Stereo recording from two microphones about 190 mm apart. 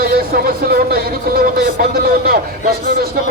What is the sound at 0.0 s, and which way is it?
Speech, 50° right (ahead or behind).